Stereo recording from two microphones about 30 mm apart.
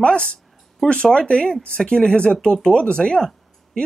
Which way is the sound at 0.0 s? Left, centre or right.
Left.